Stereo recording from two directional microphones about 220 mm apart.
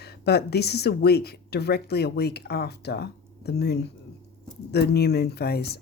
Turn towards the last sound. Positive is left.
turn(degrees=45)  # may be behind; listen again after turning